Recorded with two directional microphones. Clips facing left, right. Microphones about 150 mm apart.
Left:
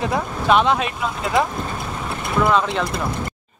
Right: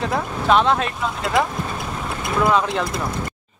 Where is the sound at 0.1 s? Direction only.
5° left (ahead or behind).